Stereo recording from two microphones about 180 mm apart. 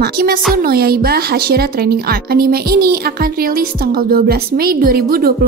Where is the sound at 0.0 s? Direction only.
55° right (ahead or behind).